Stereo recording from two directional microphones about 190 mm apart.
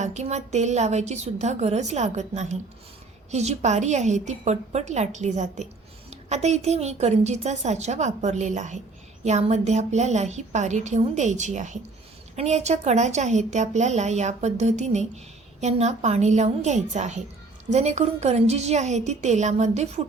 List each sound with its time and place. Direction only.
0.0 s a woman's voice: 35° right (ahead or behind)